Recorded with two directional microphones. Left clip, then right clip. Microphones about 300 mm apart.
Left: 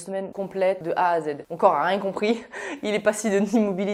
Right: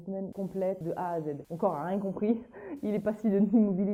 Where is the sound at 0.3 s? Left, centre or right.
Centre.